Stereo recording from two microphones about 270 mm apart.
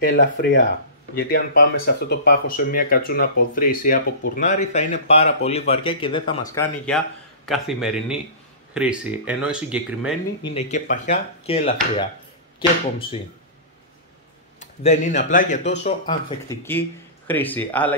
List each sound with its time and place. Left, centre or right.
0.0 s speech: left; by 6.4 s centre
6.5 s speech: centre
10.4 s speech: left
14.6 s speech: left
16.4 s speech: centre